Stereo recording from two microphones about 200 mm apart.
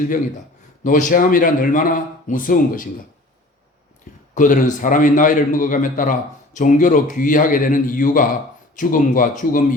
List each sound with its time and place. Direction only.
0.9 s a man's voice: 40° left (ahead or behind)
4.4 s a man's voice: 40° left (ahead or behind)